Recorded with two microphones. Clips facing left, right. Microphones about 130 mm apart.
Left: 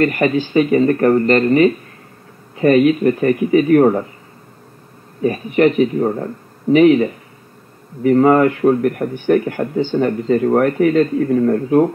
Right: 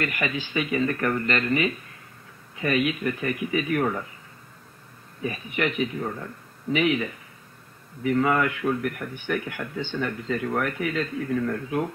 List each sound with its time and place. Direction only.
0.0 s a man's voice: 40° left (ahead or behind)
5.2 s a man's voice: 40° left (ahead or behind)